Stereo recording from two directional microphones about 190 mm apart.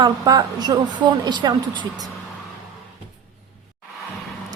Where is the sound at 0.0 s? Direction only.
20° right (ahead or behind).